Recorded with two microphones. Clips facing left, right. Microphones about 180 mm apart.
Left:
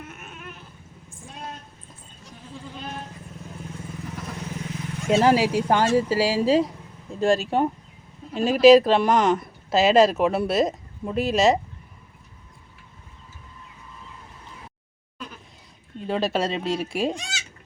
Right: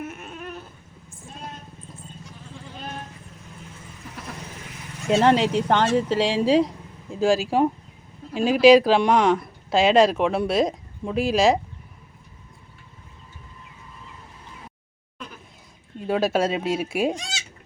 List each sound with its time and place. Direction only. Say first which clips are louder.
0.0 s a sound: right 6 dB; 30° right (ahead or behind)
5.0 s speech: even; centre (ahead or behind)
16.0 s speech: right 3 dB; 5° right (ahead or behind)